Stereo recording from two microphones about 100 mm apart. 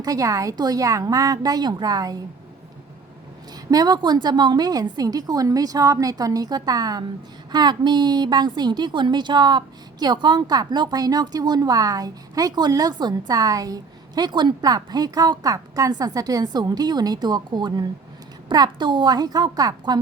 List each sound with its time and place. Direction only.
0.0 s a woman's voice: 35° right (ahead or behind)
3.7 s a woman's voice: 40° right (ahead or behind)